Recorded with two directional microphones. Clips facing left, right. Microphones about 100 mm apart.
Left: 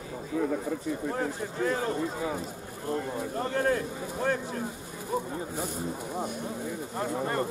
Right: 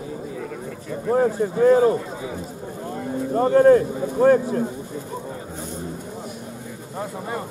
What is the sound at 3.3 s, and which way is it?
A man's voice, 40° right (ahead or behind).